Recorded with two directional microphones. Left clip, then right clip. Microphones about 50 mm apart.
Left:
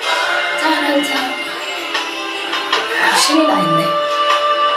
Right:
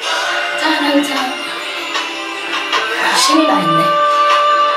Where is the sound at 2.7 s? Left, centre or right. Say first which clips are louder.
Left 1 dB; left.